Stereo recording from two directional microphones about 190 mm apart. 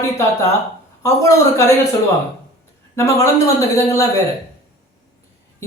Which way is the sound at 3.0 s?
15° left (ahead or behind).